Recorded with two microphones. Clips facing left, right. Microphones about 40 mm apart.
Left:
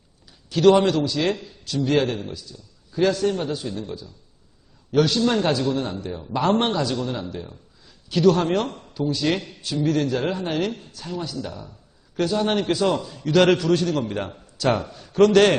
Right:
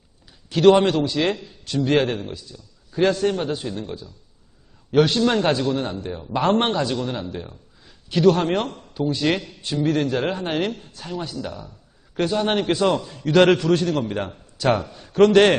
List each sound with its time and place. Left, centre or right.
0.5 s a man's voice: centre
8.6 s speech: centre
9.1 s a man's voice: centre
12.1 s a man's voice: right